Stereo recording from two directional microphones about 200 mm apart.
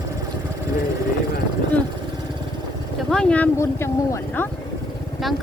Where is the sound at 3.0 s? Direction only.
5° left (ahead or behind).